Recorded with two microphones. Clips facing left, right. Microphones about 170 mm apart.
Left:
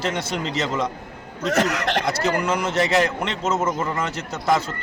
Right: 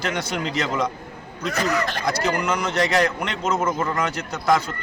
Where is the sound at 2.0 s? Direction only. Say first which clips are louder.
Left 1 dB; 25° left (ahead or behind).